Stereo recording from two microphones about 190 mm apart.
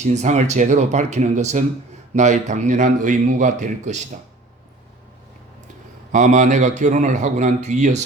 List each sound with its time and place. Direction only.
0.0 s a man's voice: 35° right (ahead or behind)
6.1 s a man's voice: 40° right (ahead or behind)